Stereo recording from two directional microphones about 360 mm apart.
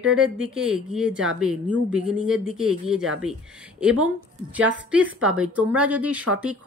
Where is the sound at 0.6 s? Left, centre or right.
Centre.